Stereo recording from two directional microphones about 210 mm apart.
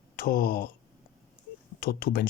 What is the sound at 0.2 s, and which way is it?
Speech, 45° left (ahead or behind).